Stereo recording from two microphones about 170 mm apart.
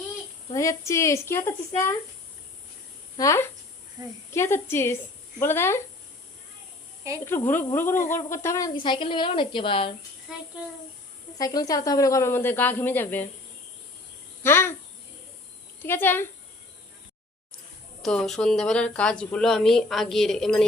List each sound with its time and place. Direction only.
0.5 s speech: 20° left (ahead or behind)
3.2 s speech: 15° left (ahead or behind)
7.3 s a woman's voice: 10° left (ahead or behind); by 9.9 s 30° left (ahead or behind)
10.3 s a woman's voice: 5° right (ahead or behind)
11.3 s speech: 20° left (ahead or behind)
14.4 s speech: 15° left (ahead or behind)
15.8 s speech: 10° left (ahead or behind)
18.0 s a woman's voice: 5° left (ahead or behind)